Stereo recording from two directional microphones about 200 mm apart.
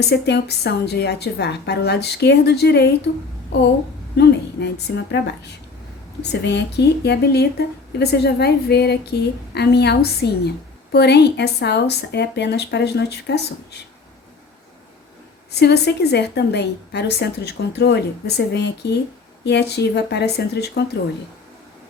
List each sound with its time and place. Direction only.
0.1 s a woman's voice: 55° left (ahead or behind)
4.2 s a woman's voice: 55° left (ahead or behind)
15.5 s a woman's voice: 55° left (ahead or behind)